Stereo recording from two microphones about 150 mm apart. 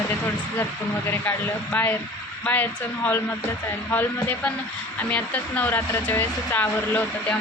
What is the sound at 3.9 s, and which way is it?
Speech, 10° left (ahead or behind).